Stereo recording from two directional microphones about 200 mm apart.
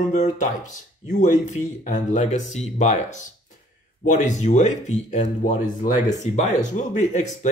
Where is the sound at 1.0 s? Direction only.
40° left (ahead or behind).